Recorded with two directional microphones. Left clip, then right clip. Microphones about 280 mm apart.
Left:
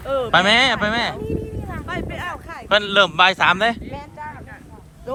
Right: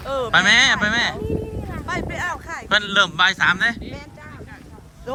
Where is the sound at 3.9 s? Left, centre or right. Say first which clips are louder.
Left 5 dB; left.